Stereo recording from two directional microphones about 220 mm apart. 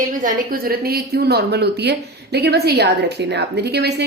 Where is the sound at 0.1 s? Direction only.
35° right (ahead or behind).